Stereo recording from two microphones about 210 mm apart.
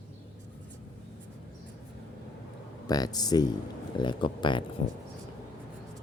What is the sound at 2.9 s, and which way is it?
Speech, 20° left (ahead or behind).